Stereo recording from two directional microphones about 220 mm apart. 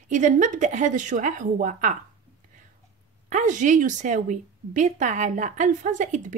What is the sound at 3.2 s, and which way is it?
A woman's voice, 35° right (ahead or behind).